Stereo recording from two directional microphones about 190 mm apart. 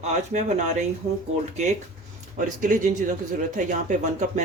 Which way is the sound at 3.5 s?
40° right (ahead or behind).